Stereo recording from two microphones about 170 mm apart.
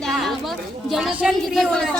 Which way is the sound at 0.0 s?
Centre (ahead or behind).